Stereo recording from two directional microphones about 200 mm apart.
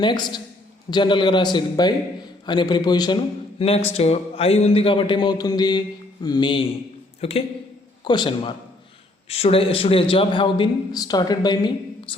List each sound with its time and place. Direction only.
0.0 s a man's voice: 20° left (ahead or behind)